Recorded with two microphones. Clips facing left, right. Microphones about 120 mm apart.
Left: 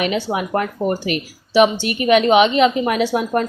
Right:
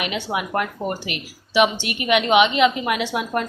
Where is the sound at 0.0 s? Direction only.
35° left (ahead or behind).